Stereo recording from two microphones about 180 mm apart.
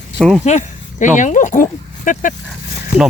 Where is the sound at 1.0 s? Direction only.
45° left (ahead or behind).